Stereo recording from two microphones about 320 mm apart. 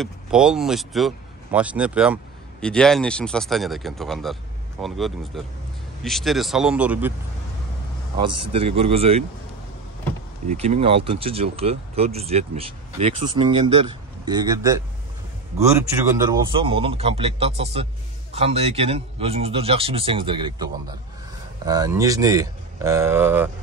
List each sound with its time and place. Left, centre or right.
0.0 s speech: centre
8.2 s speech: centre
10.5 s speech: centre
15.8 s speech: centre